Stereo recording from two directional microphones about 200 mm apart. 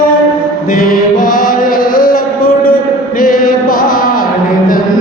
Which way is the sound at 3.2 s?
45° left (ahead or behind).